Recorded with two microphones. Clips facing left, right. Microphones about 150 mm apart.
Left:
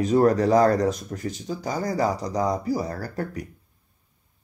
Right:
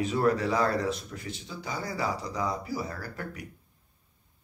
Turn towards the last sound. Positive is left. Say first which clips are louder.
# left 8 dB
turn(degrees=40)  # may be behind; listen again after turning